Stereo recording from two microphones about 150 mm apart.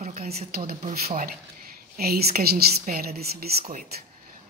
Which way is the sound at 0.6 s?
65° right (ahead or behind).